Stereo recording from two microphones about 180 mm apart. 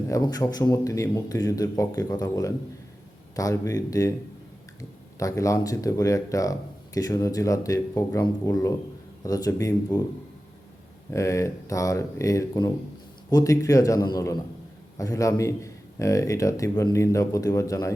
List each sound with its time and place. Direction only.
0.1 s a man's voice: 20° left (ahead or behind)
11.1 s a man's voice: 15° left (ahead or behind)